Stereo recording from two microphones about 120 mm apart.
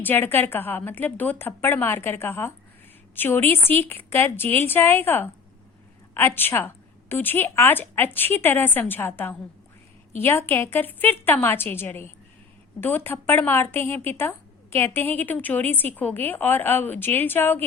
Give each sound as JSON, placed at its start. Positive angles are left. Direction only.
{"t": 0.0, "sound": "a woman's voice", "side_deg": 15}